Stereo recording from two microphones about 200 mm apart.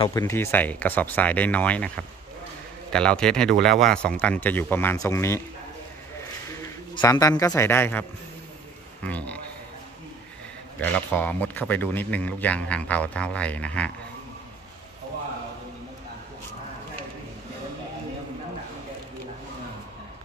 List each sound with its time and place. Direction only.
0.1 s a man's voice: 15° left (ahead or behind)
2.9 s speech: 5° left (ahead or behind)
6.9 s a man's voice: 20° left (ahead or behind)
9.0 s a man's voice: 5° left (ahead or behind)
10.8 s a man's voice: 10° left (ahead or behind)